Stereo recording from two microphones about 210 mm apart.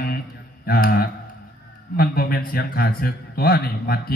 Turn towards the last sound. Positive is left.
turn(degrees=45)  # may be behind; listen again after turning